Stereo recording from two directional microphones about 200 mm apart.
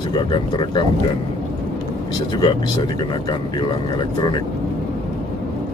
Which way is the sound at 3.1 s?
25° left (ahead or behind).